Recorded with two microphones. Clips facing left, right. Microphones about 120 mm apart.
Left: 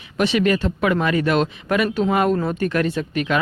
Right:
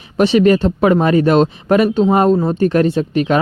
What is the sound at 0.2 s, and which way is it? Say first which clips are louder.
Speech: right 7 dB; 35° right (ahead or behind).